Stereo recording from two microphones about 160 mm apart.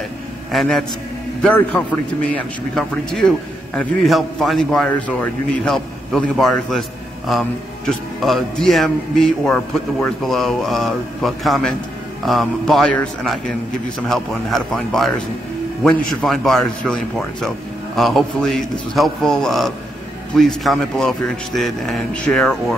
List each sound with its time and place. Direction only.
0.5 s a man's voice: centre (ahead or behind)